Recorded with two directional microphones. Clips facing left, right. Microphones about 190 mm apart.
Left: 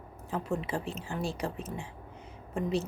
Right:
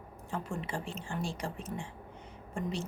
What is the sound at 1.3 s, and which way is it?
Speech, 5° left (ahead or behind).